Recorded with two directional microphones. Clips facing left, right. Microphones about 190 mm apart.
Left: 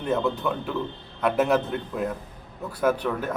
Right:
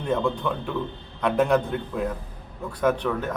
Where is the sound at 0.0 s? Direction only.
5° left (ahead or behind).